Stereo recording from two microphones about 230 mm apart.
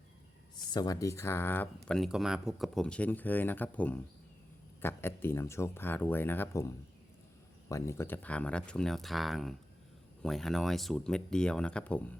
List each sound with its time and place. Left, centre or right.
0.7 s speech: centre